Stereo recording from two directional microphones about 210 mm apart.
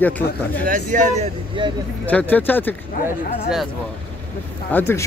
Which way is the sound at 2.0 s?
10° left (ahead or behind).